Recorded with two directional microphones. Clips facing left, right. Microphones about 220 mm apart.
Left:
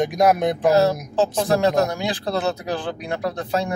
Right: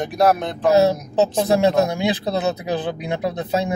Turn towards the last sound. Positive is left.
turn(degrees=-20)  # may be behind; listen again after turning